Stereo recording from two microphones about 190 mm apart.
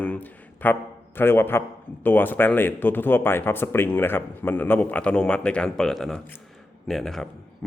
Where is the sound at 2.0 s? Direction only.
10° left (ahead or behind).